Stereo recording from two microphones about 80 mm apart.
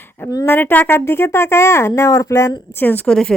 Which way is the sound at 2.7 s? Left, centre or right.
Left.